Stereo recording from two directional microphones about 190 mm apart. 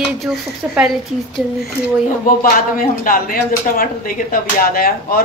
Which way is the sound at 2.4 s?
50° left (ahead or behind).